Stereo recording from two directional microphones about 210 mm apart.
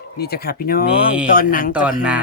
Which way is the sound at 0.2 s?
50° left (ahead or behind).